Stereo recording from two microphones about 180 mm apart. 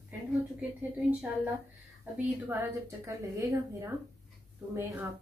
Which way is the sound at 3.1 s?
15° right (ahead or behind).